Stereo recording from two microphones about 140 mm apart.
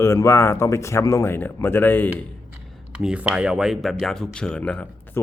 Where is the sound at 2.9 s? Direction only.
5° right (ahead or behind).